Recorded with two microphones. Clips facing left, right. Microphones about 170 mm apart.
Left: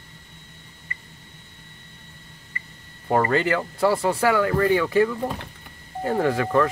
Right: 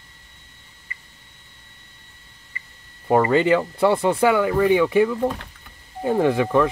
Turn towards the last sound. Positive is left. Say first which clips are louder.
# right 3 dB
turn(degrees=-15)  # may be behind; listen again after turning